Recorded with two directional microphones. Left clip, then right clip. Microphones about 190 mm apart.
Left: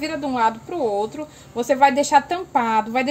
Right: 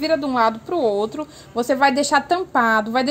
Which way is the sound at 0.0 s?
35° right (ahead or behind).